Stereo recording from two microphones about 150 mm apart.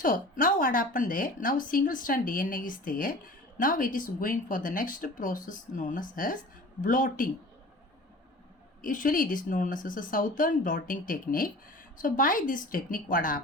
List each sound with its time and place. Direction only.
0.0 s a woman's voice: 65° left (ahead or behind)
8.8 s a woman's voice: 65° left (ahead or behind)